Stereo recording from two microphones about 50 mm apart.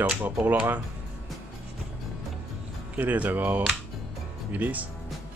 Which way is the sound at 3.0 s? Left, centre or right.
Right.